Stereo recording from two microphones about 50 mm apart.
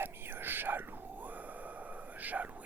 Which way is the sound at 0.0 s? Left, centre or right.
Right.